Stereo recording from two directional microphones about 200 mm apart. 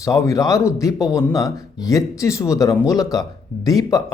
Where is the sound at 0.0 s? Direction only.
15° left (ahead or behind).